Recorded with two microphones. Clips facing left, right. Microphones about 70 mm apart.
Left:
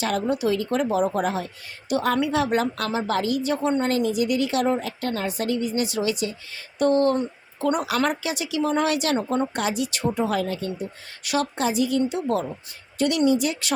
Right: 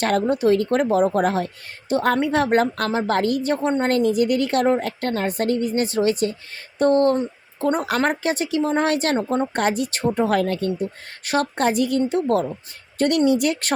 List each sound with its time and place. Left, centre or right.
0.0 s a woman's voice: right
9.1 s a woman's voice: right
9.5 s a woman's voice: right